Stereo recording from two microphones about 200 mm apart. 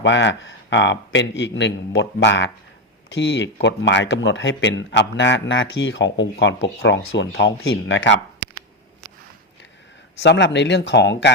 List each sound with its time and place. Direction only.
0.0 s speech: 65° left (ahead or behind)
10.2 s speech: 65° left (ahead or behind)